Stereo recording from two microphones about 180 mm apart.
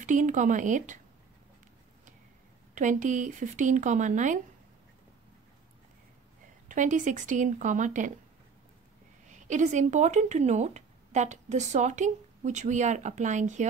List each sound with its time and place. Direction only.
0.0 s speech: 45° right (ahead or behind)
2.7 s speech: 45° right (ahead or behind)
6.7 s speech: 45° right (ahead or behind)
9.3 s speech: 40° right (ahead or behind)